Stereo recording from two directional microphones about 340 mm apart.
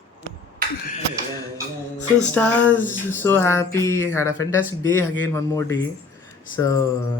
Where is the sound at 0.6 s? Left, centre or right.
Right.